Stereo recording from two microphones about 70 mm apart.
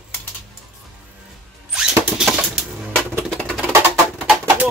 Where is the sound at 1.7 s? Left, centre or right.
Centre.